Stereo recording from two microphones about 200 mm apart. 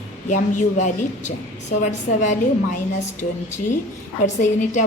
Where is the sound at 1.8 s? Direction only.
35° left (ahead or behind).